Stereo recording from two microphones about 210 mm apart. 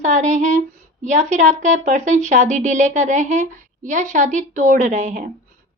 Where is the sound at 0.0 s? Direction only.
35° right (ahead or behind).